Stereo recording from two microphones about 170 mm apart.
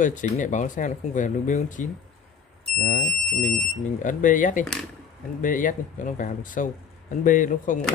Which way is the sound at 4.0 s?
50° left (ahead or behind).